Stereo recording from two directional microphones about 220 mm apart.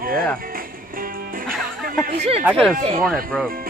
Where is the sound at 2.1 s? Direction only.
30° right (ahead or behind).